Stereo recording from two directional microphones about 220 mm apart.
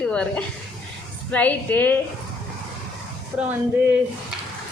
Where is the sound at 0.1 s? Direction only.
5° left (ahead or behind).